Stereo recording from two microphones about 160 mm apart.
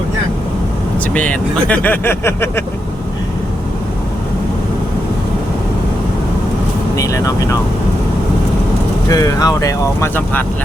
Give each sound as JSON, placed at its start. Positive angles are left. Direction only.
{"t": 1.1, "sound": "speech", "side_deg": 10}
{"t": 6.9, "sound": "vehicle", "side_deg": 20}
{"t": 9.0, "sound": "speech", "side_deg": 20}